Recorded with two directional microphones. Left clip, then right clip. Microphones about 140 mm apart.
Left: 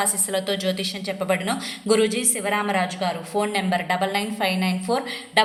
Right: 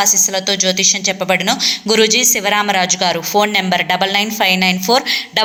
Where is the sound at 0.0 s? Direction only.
15° right (ahead or behind).